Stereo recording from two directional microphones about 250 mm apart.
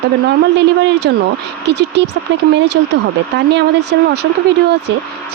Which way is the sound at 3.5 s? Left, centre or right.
Right.